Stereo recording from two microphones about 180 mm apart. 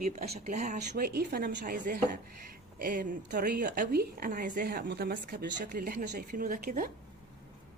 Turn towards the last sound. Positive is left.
turn(degrees=-50)  # may be behind; listen again after turning